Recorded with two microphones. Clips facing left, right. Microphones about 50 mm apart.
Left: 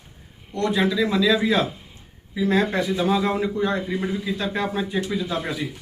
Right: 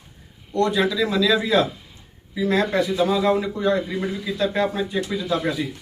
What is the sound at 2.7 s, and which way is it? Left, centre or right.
Speech, left.